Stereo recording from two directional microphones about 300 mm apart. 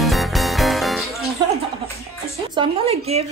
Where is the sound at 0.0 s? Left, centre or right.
Centre.